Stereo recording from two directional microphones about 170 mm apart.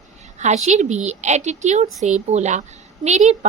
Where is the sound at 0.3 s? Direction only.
40° right (ahead or behind).